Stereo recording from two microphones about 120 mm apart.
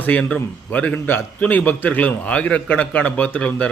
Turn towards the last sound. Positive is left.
turn(degrees=10)  # may be behind; listen again after turning